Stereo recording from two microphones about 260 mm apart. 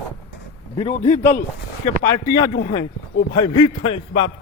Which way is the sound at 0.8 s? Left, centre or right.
Left.